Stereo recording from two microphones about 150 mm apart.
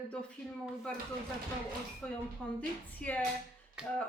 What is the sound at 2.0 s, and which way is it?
A woman's voice, 10° left (ahead or behind).